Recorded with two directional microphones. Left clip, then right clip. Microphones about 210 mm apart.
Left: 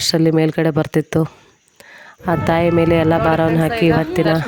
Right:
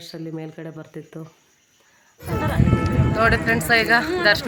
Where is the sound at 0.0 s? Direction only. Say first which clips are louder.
Left 18 dB; 50° left (ahead or behind).